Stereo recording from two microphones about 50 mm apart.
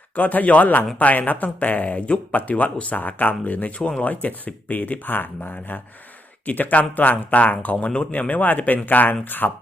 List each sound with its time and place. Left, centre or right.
0.2 s speech: left